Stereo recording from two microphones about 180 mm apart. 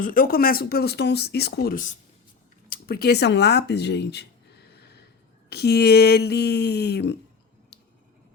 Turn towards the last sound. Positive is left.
turn(degrees=65)  # may be behind; listen again after turning